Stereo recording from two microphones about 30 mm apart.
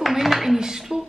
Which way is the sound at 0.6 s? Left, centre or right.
Centre.